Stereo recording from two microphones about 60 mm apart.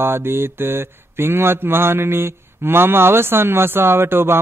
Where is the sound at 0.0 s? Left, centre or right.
Right.